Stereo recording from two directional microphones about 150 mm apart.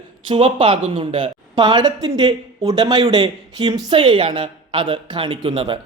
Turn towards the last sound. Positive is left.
turn(degrees=-35)  # may be behind; listen again after turning